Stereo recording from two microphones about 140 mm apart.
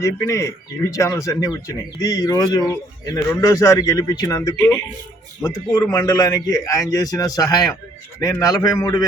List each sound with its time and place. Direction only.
0.0 s speech: 20° left (ahead or behind)